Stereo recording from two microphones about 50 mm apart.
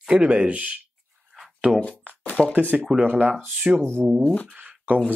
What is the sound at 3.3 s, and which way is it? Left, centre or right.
Speech, centre.